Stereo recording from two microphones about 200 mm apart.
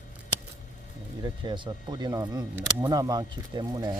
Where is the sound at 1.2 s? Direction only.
25° right (ahead or behind).